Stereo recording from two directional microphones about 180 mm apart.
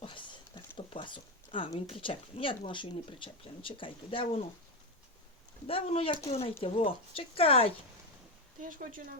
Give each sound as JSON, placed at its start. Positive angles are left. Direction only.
{"t": 0.0, "sound": "a sound", "side_deg": 25}
{"t": 0.8, "sound": "speech", "side_deg": 30}
{"t": 5.6, "sound": "speech", "side_deg": 35}
{"t": 8.6, "sound": "speech", "side_deg": -50}